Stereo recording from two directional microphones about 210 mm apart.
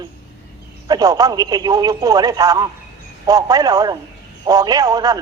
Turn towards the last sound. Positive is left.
turn(degrees=-15)  # may be behind; listen again after turning